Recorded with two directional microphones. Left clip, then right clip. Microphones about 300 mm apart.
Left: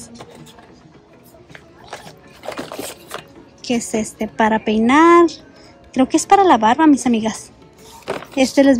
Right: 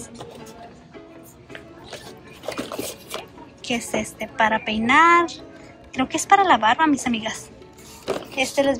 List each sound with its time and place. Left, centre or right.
2.4 s music: centre
3.6 s a woman's voice: centre
8.0 s a sound: centre